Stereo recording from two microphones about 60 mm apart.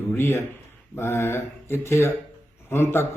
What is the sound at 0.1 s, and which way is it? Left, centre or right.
Speech, left.